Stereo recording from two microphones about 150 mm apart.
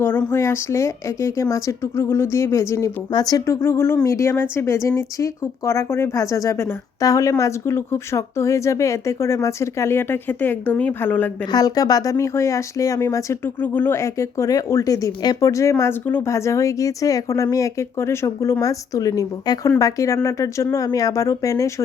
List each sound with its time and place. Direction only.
0.0 s speech: 15° left (ahead or behind)
11.5 s speech: 25° left (ahead or behind)